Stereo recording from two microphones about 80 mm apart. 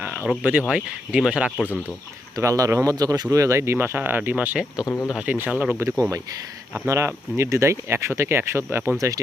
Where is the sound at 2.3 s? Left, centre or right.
Right.